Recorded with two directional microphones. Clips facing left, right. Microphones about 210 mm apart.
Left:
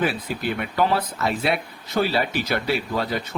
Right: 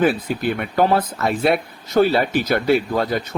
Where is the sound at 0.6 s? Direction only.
50° right (ahead or behind).